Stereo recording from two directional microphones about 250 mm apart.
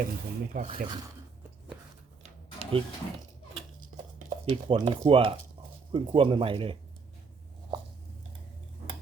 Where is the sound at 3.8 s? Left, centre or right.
Right.